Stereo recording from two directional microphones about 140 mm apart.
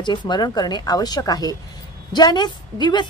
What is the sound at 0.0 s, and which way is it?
A woman's voice, 30° left (ahead or behind).